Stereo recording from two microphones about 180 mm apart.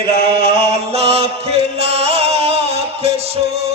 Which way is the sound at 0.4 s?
35° right (ahead or behind).